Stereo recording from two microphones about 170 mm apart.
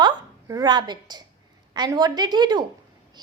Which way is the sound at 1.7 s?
25° right (ahead or behind).